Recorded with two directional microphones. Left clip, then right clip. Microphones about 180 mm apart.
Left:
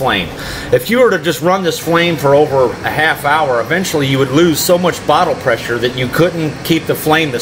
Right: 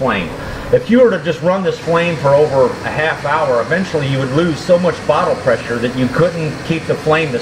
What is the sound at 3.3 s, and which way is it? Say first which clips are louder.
A man's voice: left 2 dB; 20° left (ahead or behind).